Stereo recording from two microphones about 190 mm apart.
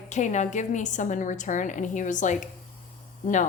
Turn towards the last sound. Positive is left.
turn(degrees=40)  # may be behind; listen again after turning